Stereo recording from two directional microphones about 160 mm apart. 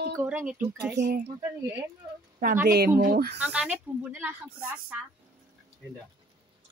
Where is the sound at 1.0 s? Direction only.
65° right (ahead or behind).